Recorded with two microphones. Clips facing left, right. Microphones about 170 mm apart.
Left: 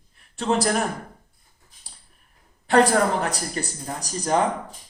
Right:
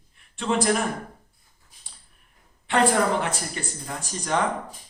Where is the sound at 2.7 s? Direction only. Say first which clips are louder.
Left 3 dB; 40° left (ahead or behind).